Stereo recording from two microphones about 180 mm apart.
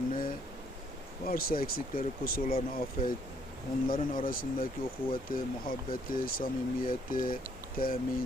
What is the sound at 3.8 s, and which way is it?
Speech, 50° left (ahead or behind).